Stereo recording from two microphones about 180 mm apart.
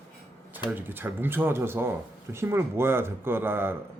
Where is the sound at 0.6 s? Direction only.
10° right (ahead or behind).